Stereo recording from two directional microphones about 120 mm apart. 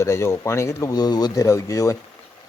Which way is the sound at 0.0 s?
25° left (ahead or behind).